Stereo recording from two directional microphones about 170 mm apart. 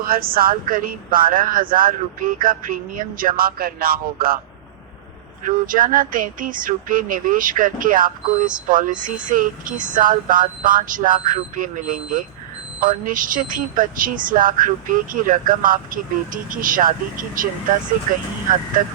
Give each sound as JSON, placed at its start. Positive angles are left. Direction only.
{"t": 0.0, "sound": "speech", "side_deg": -60}
{"t": 5.5, "sound": "speech", "side_deg": -55}